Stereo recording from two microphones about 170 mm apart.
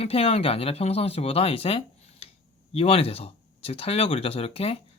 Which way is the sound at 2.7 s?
35° left (ahead or behind).